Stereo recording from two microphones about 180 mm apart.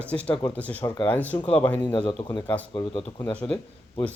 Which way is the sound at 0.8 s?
20° left (ahead or behind).